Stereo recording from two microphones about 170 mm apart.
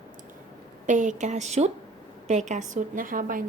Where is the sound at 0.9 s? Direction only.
45° right (ahead or behind).